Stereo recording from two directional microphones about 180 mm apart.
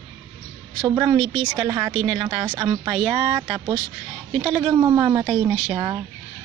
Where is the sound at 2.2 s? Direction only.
25° right (ahead or behind).